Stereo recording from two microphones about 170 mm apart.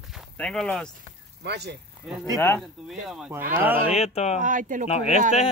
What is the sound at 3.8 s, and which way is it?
Speech, 40° left (ahead or behind).